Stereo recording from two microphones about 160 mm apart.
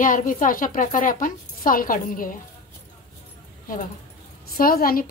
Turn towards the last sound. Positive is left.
turn(degrees=65)  # may be behind; listen again after turning